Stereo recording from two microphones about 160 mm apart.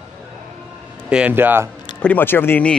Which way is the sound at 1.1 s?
10° right (ahead or behind).